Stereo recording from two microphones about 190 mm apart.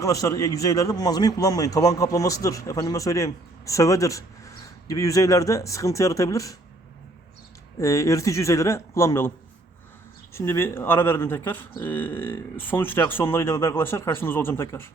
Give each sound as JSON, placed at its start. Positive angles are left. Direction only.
{"t": 0.0, "sound": "a man's voice", "side_deg": 15}
{"t": 7.8, "sound": "a man's voice", "side_deg": 15}
{"t": 10.3, "sound": "a man's voice", "side_deg": 15}